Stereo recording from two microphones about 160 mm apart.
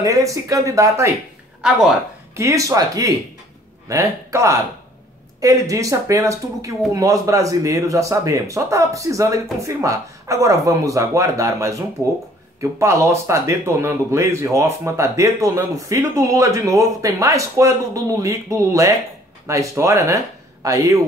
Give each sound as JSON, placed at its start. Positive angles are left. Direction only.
{"t": 0.0, "sound": "speech", "side_deg": -20}
{"t": 1.6, "sound": "speech", "side_deg": -5}
{"t": 2.3, "sound": "speech", "side_deg": -20}